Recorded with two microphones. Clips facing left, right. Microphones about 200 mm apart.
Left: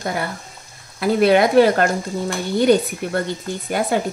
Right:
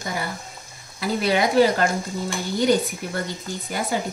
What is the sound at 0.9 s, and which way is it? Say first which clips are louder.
Speech: left 7 dB; 60° left (ahead or behind).